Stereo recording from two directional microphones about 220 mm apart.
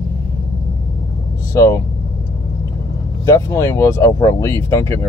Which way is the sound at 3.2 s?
15° left (ahead or behind).